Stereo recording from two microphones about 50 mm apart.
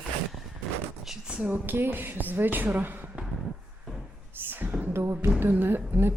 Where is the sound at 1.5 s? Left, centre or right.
Right.